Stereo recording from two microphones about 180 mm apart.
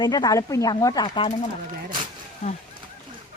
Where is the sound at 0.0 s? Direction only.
20° left (ahead or behind).